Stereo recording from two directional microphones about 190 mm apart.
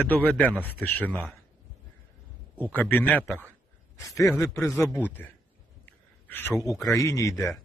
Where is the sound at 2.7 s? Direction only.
10° left (ahead or behind).